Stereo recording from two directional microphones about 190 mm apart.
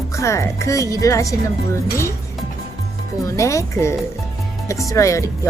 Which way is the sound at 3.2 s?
15° left (ahead or behind).